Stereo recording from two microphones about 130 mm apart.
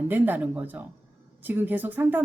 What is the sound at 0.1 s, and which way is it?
Speech, 15° right (ahead or behind).